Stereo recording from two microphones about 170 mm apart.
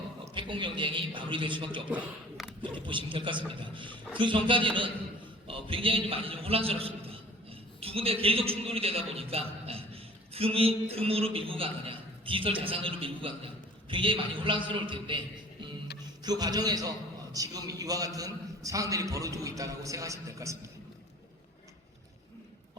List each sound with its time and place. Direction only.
0.3 s a man's voice: 30° right (ahead or behind)
1.9 s a sound: 10° right (ahead or behind)
2.7 s a man's voice: 30° right (ahead or behind)
16.2 s a man's voice: 25° right (ahead or behind)